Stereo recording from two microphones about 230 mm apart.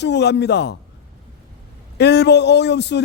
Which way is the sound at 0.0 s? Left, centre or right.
Left.